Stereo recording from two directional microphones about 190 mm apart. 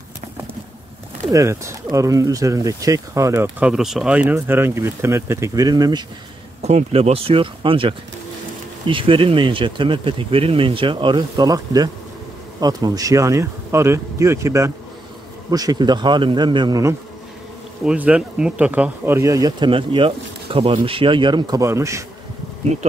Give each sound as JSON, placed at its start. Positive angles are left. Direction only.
{"t": 1.3, "sound": "speech", "side_deg": -15}
{"t": 3.4, "sound": "speech", "side_deg": -5}
{"t": 6.6, "sound": "speech", "side_deg": -35}
{"t": 17.8, "sound": "speech", "side_deg": -5}